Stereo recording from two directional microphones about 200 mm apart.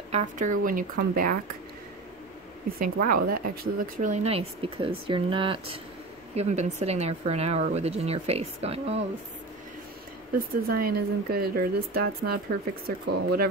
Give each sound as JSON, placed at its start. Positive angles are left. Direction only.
{"t": 0.1, "sound": "speech", "side_deg": -40}
{"t": 2.8, "sound": "a woman's voice", "side_deg": -45}
{"t": 10.3, "sound": "speech", "side_deg": -45}